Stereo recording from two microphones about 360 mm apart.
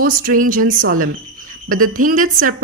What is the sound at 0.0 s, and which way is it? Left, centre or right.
A woman's voice, right.